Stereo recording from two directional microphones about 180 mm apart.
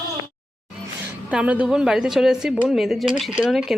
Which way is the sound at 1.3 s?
5° right (ahead or behind).